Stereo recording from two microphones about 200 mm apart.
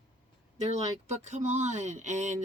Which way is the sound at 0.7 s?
35° right (ahead or behind).